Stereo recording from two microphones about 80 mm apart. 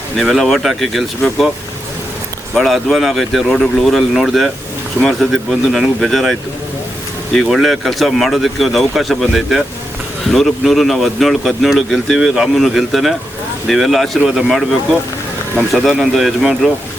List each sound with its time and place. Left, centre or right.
0.2 s speech: centre
2.6 s speech: centre
7.4 s speech: centre
15.7 s speech: centre